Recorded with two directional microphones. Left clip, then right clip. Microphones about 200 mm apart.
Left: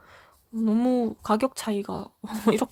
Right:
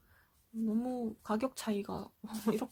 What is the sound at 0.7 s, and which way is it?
Speech, 40° left (ahead or behind).